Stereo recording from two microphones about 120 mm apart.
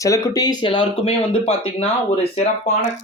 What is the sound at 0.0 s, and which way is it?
Speech, 30° left (ahead or behind).